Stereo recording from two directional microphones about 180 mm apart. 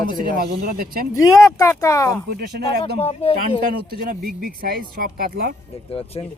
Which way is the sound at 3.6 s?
50° right (ahead or behind).